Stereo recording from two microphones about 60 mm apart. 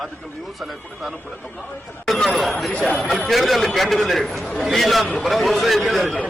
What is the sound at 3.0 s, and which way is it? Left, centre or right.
Speech, centre.